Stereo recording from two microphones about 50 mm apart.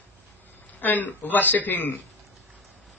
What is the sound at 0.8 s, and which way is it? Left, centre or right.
A man's voice, left.